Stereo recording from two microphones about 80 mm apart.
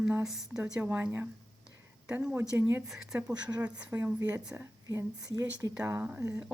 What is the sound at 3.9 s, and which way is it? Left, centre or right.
Speech, right.